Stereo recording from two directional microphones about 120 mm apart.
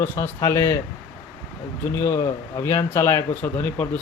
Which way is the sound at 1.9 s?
20° left (ahead or behind).